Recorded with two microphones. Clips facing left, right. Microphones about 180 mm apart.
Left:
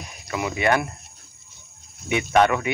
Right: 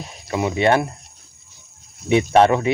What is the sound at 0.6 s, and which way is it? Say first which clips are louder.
Speech: right 4 dB; 30° right (ahead or behind).